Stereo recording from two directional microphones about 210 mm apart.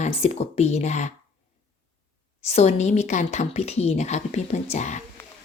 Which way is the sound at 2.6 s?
30° left (ahead or behind).